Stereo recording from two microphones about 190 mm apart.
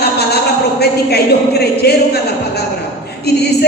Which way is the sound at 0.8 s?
60° left (ahead or behind).